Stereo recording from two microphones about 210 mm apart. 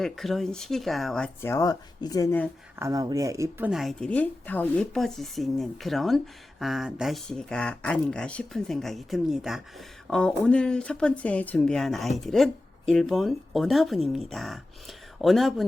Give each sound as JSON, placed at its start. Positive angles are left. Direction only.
{"t": 0.0, "sound": "speech", "side_deg": 0}
{"t": 2.7, "sound": "speech", "side_deg": -15}
{"t": 3.7, "sound": "speech", "side_deg": 0}